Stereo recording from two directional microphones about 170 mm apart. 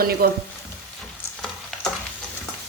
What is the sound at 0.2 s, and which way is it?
Speech, 65° right (ahead or behind).